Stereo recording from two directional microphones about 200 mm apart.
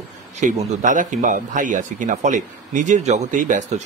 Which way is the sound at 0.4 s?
35° right (ahead or behind).